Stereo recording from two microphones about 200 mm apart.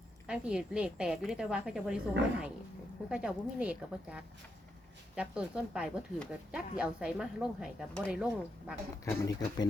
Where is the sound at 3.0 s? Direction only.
5° right (ahead or behind).